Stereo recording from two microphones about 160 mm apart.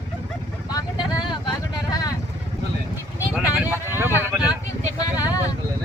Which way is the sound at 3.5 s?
10° right (ahead or behind).